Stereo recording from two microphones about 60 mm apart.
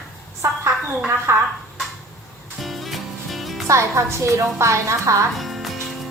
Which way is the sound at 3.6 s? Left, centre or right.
Right.